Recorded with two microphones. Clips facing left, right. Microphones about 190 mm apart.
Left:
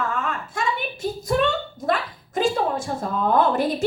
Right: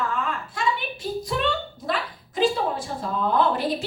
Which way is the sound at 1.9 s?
45° left (ahead or behind).